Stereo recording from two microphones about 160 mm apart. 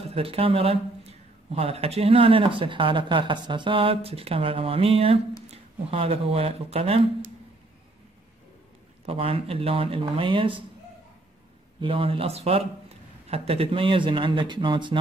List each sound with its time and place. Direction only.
0.1 s a man's voice: 35° right (ahead or behind)
9.0 s a man's voice: 35° right (ahead or behind)
11.8 s a man's voice: 35° right (ahead or behind)